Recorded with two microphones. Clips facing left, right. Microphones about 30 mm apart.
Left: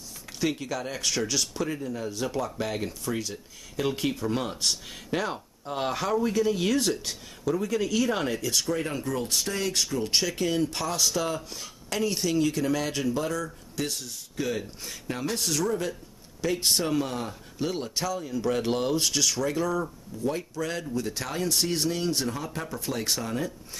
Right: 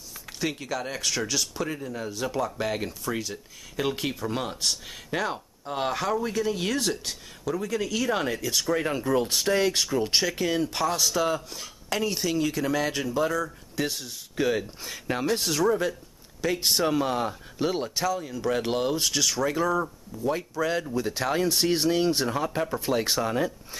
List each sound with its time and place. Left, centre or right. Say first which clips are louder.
0.4 s speech: left 1 dB; centre; by 15.6 s right
15.8 s speech: right 4 dB; centre
17.0 s speech: right 5 dB; centre